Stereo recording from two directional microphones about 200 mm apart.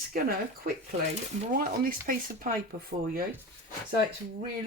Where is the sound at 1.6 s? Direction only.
45° right (ahead or behind).